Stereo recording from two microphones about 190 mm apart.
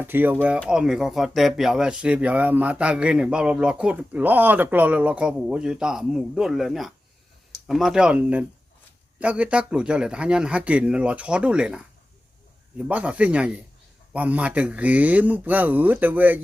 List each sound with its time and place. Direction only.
0.0 s speech: 10° right (ahead or behind)
12.9 s speech: 5° right (ahead or behind)